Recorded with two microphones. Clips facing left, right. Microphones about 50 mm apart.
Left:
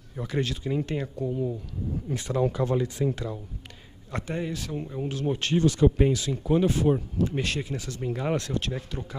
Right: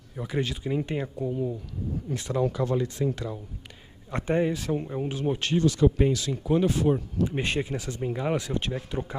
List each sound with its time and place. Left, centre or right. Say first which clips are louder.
0.1 s speech: even; centre
2.0 s speech: even; centre
2.4 s speech: left 1 dB; centre
4.1 s speech: right 6 dB; right
5.3 s speech: left 1 dB; centre
5.6 s speech: left 1 dB; left
5.9 s speech: left 1 dB; centre
7.2 s speech: right 1 dB; right
8.0 s speech: even; centre